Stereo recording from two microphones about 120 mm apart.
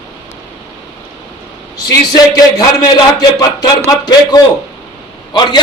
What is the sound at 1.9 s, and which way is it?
A man's voice, 35° left (ahead or behind).